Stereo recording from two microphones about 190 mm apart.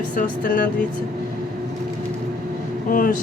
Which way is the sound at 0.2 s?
45° left (ahead or behind).